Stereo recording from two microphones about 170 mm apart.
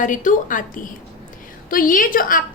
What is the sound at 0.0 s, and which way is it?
A woman's voice, 50° left (ahead or behind).